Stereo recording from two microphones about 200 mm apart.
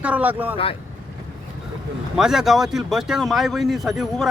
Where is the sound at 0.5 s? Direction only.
30° left (ahead or behind).